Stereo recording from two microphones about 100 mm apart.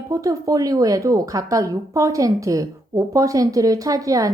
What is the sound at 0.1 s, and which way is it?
A woman's voice, 35° right (ahead or behind).